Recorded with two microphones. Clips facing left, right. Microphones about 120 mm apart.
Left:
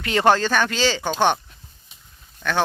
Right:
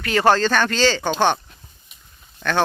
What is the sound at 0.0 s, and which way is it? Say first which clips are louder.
Speech: right 1 dB; 20° left (ahead or behind).